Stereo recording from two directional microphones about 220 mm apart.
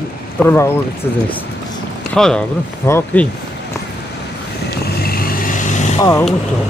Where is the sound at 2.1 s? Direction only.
5° left (ahead or behind).